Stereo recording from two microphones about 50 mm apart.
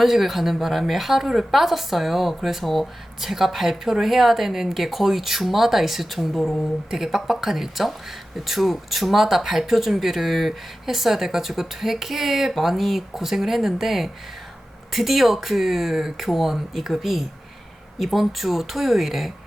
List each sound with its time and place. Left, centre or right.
0.0 s a woman's voice: centre